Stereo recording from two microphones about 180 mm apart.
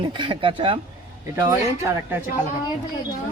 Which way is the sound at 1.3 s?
15° right (ahead or behind).